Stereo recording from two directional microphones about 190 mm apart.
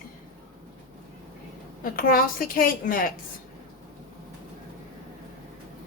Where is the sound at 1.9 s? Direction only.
50° left (ahead or behind).